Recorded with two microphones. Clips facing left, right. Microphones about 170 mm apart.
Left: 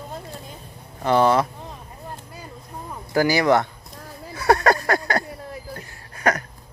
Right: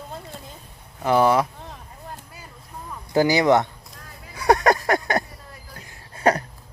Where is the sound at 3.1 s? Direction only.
20° right (ahead or behind).